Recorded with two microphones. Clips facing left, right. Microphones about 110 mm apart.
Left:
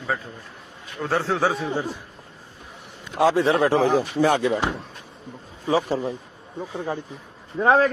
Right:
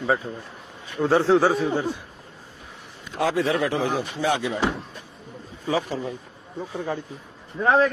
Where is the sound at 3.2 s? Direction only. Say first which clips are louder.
Left 4 dB; 30° left (ahead or behind).